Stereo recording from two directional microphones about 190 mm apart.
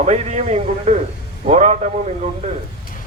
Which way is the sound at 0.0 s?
35° right (ahead or behind).